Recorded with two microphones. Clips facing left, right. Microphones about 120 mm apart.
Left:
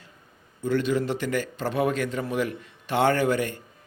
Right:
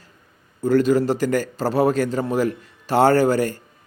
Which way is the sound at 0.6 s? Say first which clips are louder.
Right 7 dB; 40° right (ahead or behind).